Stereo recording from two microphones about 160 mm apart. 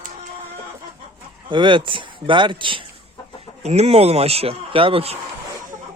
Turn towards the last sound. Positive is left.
turn(degrees=-35)  # may be behind; listen again after turning